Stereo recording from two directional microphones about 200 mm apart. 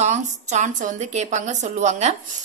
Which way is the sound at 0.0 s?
35° right (ahead or behind).